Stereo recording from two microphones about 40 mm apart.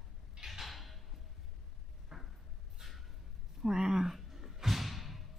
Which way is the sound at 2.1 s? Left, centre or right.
Centre.